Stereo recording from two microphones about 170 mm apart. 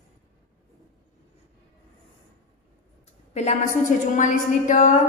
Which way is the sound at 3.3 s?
40° left (ahead or behind).